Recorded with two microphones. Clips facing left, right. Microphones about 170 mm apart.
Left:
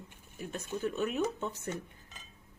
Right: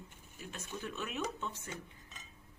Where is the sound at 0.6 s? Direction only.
35° left (ahead or behind).